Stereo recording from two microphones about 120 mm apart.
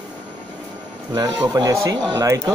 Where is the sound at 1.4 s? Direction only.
30° right (ahead or behind).